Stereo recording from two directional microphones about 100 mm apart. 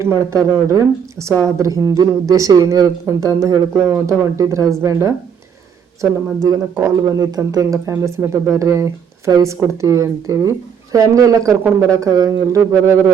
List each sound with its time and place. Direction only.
0.0 s speech: 30° right (ahead or behind)